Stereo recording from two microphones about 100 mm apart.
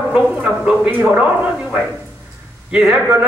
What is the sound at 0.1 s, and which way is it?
A man's voice, 10° right (ahead or behind).